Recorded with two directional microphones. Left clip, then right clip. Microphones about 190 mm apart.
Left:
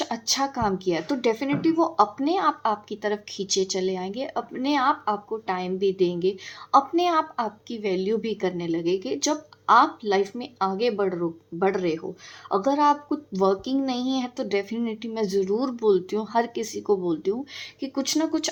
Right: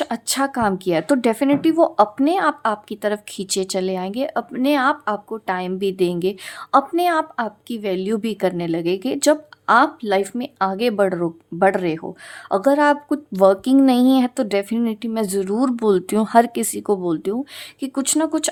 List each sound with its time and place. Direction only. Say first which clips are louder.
0.0 s speech: right 4 dB; 35° right (ahead or behind)